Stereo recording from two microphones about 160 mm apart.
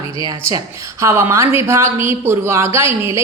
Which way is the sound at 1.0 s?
15° right (ahead or behind).